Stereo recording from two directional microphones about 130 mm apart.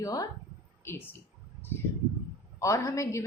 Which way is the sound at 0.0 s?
25° left (ahead or behind).